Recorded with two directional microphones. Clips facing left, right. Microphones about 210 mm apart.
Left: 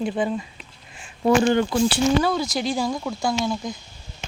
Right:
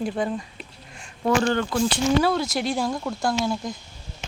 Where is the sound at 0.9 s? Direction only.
5° left (ahead or behind).